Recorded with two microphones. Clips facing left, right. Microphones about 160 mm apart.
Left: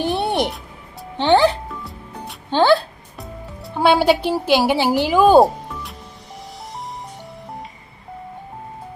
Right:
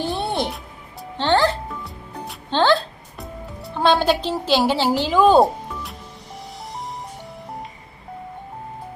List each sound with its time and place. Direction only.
0.0 s music: 15° left (ahead or behind); by 3.8 s centre (ahead or behind)
3.8 s speech: 15° left (ahead or behind)